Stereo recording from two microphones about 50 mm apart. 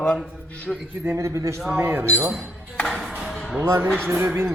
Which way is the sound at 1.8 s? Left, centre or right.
Right.